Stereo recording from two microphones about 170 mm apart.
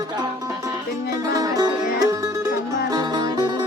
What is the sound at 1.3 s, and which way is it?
Music, 20° right (ahead or behind).